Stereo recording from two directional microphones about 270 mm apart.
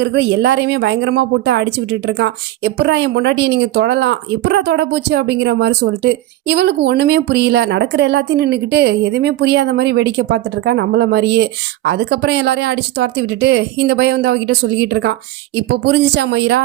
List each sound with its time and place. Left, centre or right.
0.0 s a woman's voice: right